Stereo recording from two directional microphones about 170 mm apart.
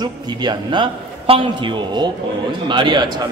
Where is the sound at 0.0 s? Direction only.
25° right (ahead or behind).